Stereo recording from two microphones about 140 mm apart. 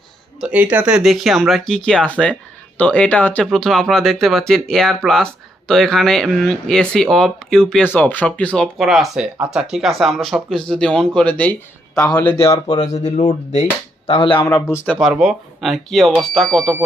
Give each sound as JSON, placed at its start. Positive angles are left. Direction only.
{"t": 0.3, "sound": "speech", "side_deg": -10}
{"t": 12.8, "sound": "speech", "side_deg": 55}
{"t": 14.1, "sound": "speech", "side_deg": 35}
{"t": 14.5, "sound": "speech", "side_deg": 20}
{"t": 15.0, "sound": "speech", "side_deg": -5}